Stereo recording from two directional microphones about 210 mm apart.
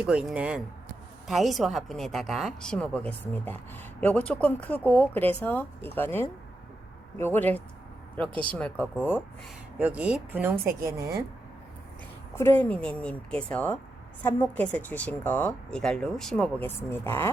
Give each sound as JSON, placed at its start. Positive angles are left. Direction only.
{"t": 0.0, "sound": "a woman's voice", "side_deg": -5}
{"t": 8.3, "sound": "speech", "side_deg": -25}
{"t": 8.5, "sound": "a woman's voice", "side_deg": 5}
{"t": 9.7, "sound": "speech", "side_deg": -5}
{"t": 12.4, "sound": "a woman's voice", "side_deg": 10}